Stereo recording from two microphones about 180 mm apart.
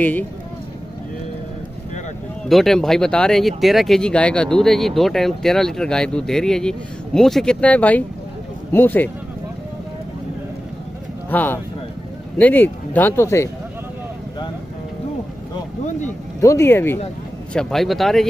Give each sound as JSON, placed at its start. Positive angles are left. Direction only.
{"t": 2.4, "sound": "speech", "side_deg": 0}
{"t": 11.2, "sound": "speech", "side_deg": 10}
{"t": 16.3, "sound": "speech", "side_deg": 15}